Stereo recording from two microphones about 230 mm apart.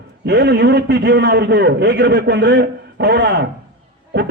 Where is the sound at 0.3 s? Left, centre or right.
Right.